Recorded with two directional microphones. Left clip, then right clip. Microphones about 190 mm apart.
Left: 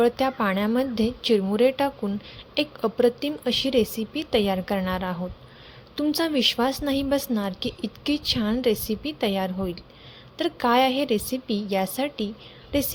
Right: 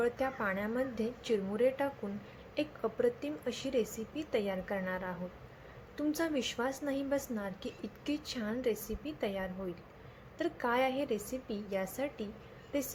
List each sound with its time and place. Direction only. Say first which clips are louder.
0.0 s a woman's voice: left 11 dB; 50° left (ahead or behind)